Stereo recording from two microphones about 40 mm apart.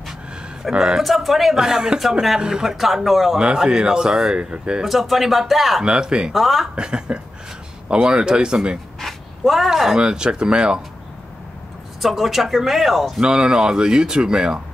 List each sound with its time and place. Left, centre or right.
0.7 s speech: centre
1.6 s speech: centre
3.3 s speech: centre
4.8 s speech: centre
5.9 s speech: right
6.3 s speech: centre
6.7 s speech: right
9.0 s a sound: centre
9.9 s speech: right
12.0 s speech: centre
13.2 s speech: right